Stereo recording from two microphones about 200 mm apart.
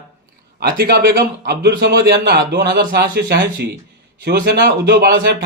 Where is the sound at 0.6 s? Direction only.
50° right (ahead or behind).